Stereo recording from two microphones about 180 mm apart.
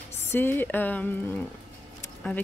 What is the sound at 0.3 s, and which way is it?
Speech, 10° left (ahead or behind).